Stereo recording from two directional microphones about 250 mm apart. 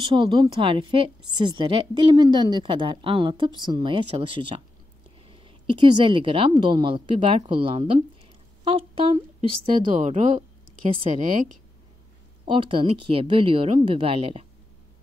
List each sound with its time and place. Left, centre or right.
0.0 s a woman's voice: centre
12.4 s a woman's voice: centre